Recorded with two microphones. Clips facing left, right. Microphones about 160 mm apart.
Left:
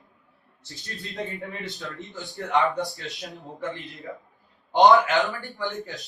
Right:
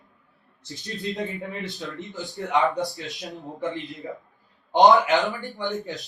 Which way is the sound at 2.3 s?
20° right (ahead or behind).